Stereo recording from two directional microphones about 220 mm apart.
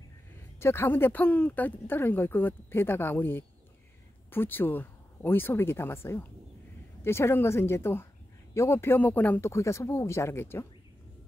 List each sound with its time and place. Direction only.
0.6 s speech: 10° left (ahead or behind)